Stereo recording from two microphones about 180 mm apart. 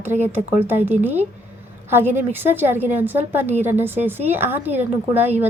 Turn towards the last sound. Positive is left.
turn(degrees=-10)  # may be behind; listen again after turning